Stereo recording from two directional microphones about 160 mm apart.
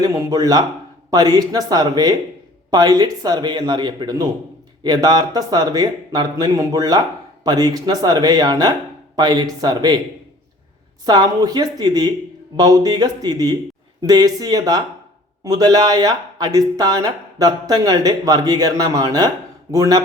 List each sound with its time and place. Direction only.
0.0 s speech: 20° right (ahead or behind)
11.0 s speech: 25° right (ahead or behind)